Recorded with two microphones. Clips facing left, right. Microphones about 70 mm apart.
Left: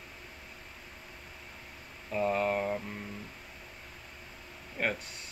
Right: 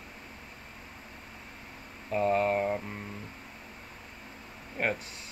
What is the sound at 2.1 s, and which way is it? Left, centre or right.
Speech, centre.